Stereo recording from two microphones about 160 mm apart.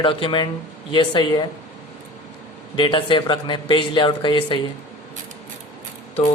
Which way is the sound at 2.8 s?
30° left (ahead or behind).